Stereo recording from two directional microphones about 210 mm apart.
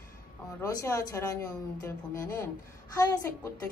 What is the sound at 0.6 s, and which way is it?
Speech, 15° left (ahead or behind).